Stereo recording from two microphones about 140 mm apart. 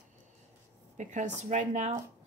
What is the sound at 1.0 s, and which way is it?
Speech, 60° right (ahead or behind).